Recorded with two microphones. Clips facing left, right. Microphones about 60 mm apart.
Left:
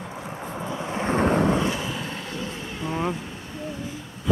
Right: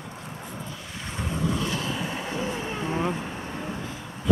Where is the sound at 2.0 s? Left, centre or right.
Centre.